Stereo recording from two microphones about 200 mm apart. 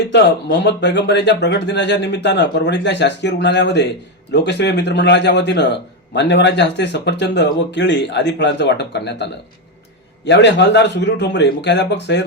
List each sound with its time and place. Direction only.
0.1 s speech: 55° left (ahead or behind)
10.2 s speech: 60° left (ahead or behind)